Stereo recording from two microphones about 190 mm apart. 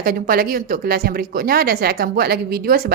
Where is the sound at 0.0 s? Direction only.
50° right (ahead or behind).